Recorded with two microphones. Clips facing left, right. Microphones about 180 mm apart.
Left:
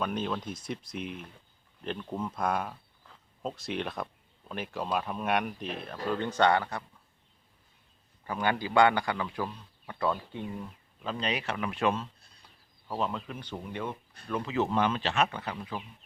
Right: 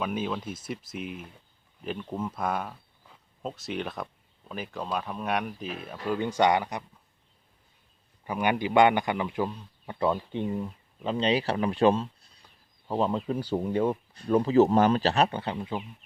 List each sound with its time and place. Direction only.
0.0 s speech: 5° right (ahead or behind)
8.3 s speech: 15° right (ahead or behind)